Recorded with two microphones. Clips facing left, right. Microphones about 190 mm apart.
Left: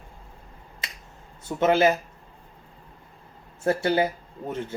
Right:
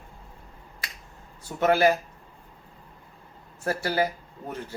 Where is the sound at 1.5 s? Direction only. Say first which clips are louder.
Left 1 dB; 20° left (ahead or behind).